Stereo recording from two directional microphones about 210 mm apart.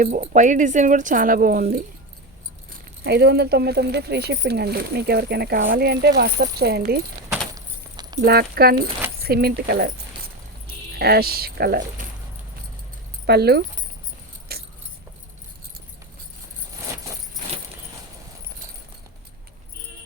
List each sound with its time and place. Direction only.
0.0 s speech: 35° right (ahead or behind)
3.0 s speech: 50° right (ahead or behind)
7.5 s keys jangling: 20° right (ahead or behind)
8.2 s speech: 50° right (ahead or behind)
10.9 s speech: 45° right (ahead or behind)
13.2 s speech: 50° right (ahead or behind)
14.5 s keys jangling: 50° right (ahead or behind)